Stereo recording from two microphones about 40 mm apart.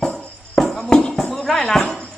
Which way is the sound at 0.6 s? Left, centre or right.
Centre.